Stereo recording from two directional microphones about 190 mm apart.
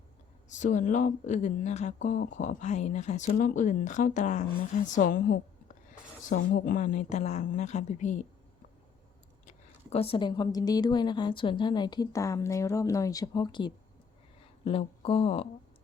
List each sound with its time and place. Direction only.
0.5 s speech: 40° left (ahead or behind)
9.5 s a woman's voice: 30° left (ahead or behind)